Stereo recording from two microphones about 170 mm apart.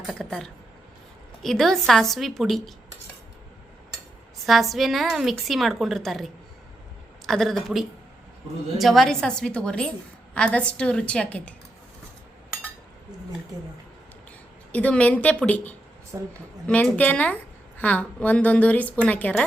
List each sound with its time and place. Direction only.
0.1 s a woman's voice: 5° left (ahead or behind)
4.4 s a woman's voice: centre (ahead or behind)
14.7 s a woman's voice: 10° left (ahead or behind)
16.1 s a woman's voice: 15° right (ahead or behind)
16.6 s a woman's voice: 5° left (ahead or behind)